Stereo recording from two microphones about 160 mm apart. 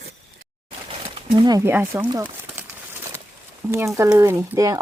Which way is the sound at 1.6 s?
15° right (ahead or behind).